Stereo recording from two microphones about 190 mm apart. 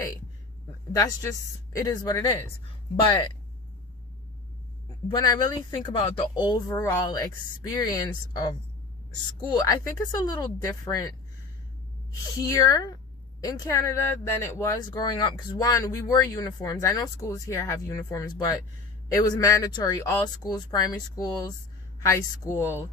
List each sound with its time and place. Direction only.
0.9 s speech: 15° left (ahead or behind)
5.0 s speech: 20° left (ahead or behind)
12.4 s speech: 20° left (ahead or behind)